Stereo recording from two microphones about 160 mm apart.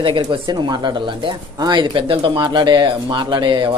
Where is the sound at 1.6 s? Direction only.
30° right (ahead or behind).